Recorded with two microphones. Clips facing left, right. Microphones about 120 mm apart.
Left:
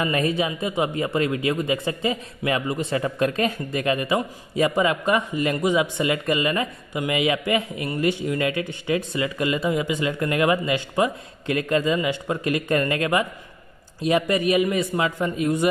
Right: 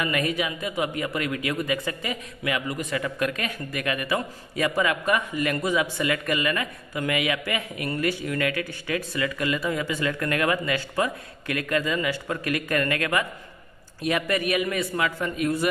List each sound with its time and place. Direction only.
0.0 s speech: 30° left (ahead or behind)